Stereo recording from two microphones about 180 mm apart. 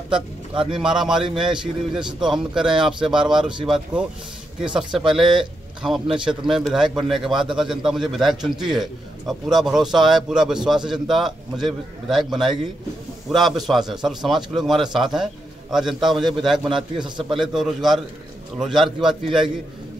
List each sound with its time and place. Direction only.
0.1 s a man's voice: 5° right (ahead or behind)